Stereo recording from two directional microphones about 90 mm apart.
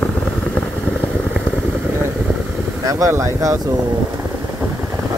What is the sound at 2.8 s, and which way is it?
Speech, 40° right (ahead or behind).